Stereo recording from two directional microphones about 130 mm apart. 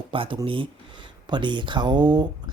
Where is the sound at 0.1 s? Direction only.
40° right (ahead or behind).